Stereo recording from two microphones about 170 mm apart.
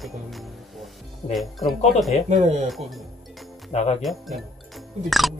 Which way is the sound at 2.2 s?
40° right (ahead or behind).